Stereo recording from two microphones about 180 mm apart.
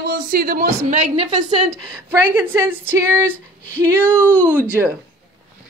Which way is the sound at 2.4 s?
10° right (ahead or behind).